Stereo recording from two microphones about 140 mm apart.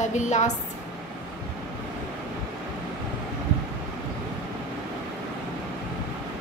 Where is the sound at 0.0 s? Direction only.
60° left (ahead or behind).